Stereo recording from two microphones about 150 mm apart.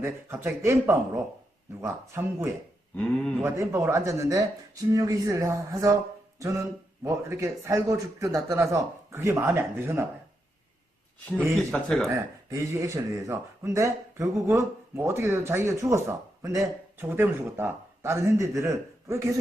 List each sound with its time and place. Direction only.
0.0 s speech: 15° right (ahead or behind)
2.9 s speech: 5° left (ahead or behind)
3.4 s speech: 20° right (ahead or behind)
11.5 s speech: 5° left (ahead or behind)
12.0 s speech: 20° right (ahead or behind)